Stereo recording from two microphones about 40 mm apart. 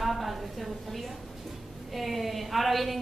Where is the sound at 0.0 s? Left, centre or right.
Centre.